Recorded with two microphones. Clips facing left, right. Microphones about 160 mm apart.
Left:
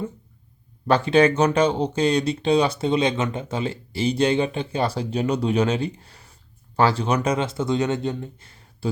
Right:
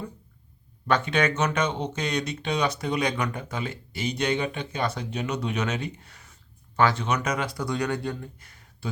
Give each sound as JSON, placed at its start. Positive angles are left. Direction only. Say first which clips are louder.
{"t": 0.9, "sound": "speech", "louder": "left 7 dB", "side_deg": 30}